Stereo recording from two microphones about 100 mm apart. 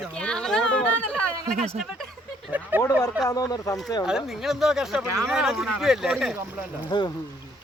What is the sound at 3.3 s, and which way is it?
Speech, 35° left (ahead or behind).